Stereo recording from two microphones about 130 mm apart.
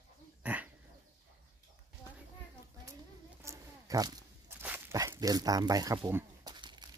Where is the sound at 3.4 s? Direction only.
25° right (ahead or behind).